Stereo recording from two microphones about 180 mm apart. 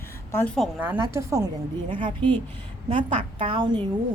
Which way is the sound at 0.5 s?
Centre (ahead or behind).